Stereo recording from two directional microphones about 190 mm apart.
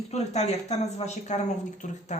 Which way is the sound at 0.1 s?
35° left (ahead or behind).